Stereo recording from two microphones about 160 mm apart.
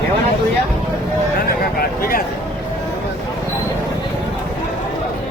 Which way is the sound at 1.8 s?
65° left (ahead or behind).